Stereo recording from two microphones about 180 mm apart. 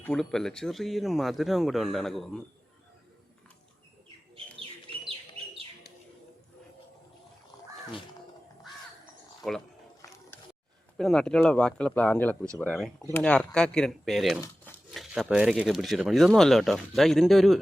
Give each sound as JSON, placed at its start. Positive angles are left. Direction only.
{"t": 0.0, "sound": "speech", "side_deg": 5}
{"t": 10.0, "sound": "a sound", "side_deg": 15}
{"t": 10.9, "sound": "speech", "side_deg": 5}
{"t": 13.0, "sound": "speech", "side_deg": 15}
{"t": 13.2, "sound": "speech", "side_deg": 5}